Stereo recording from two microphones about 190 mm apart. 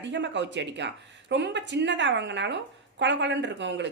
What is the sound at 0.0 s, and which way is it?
Speech, 70° right (ahead or behind).